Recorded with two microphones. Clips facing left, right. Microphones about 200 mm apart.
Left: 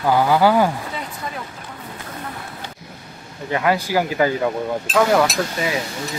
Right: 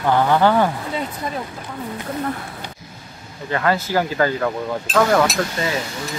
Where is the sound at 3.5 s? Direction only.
10° left (ahead or behind).